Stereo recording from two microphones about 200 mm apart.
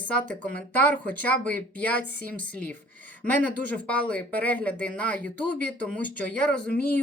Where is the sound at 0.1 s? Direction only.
5° left (ahead or behind).